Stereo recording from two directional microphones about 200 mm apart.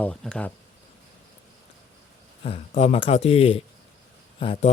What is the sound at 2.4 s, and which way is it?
A man's voice, 30° left (ahead or behind).